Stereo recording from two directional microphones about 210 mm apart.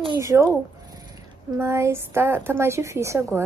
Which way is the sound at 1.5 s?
10° right (ahead or behind).